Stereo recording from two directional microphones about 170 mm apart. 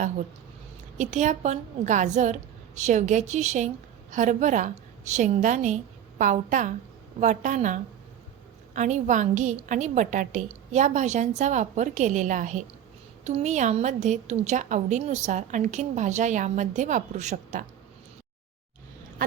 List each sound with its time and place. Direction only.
0.9 s a woman's voice: 45° right (ahead or behind)